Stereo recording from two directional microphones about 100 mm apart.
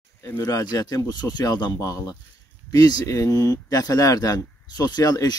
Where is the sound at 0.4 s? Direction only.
40° left (ahead or behind).